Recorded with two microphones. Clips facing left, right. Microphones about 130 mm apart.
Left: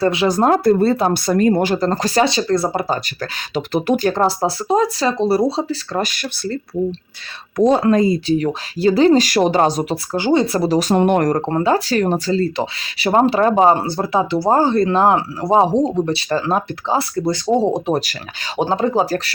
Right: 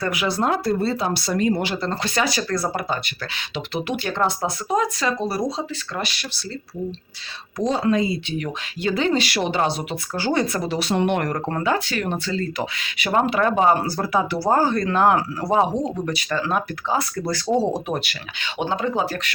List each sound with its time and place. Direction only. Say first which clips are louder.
0.0 s speech: left 8 dB; 30° left (ahead or behind)
0.3 s speech: left 7 dB; 45° left (ahead or behind)
2.3 s speech: left 6 dB; 25° left (ahead or behind)
2.9 s speech: left 5 dB; 45° left (ahead or behind)
7.6 s speech: left 7 dB; 55° left (ahead or behind); by 10.2 s 40° left (ahead or behind)
10.2 s speech: left 6 dB; 20° left (ahead or behind)
10.4 s speech: left 7 dB; 35° left (ahead or behind)
11.4 s speech: left 6 dB; 30° left (ahead or behind)
18.5 s speech: left 6 dB; 35° left (ahead or behind)